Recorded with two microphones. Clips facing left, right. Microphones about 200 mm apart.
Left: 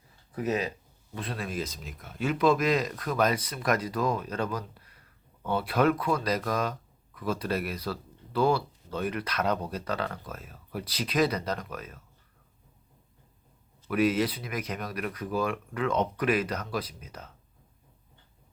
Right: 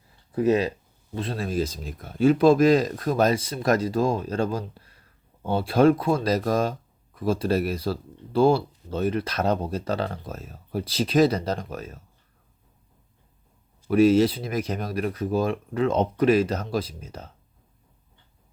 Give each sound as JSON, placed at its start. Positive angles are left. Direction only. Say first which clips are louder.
{"t": 0.3, "sound": "speech", "louder": "right 8 dB", "side_deg": -30}
{"t": 13.8, "sound": "speech", "louder": "right 8 dB", "side_deg": -30}